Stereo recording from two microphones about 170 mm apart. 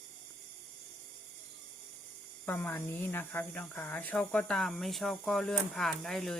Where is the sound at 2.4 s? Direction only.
10° left (ahead or behind).